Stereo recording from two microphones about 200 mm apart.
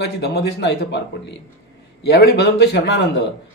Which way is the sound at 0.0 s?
55° left (ahead or behind).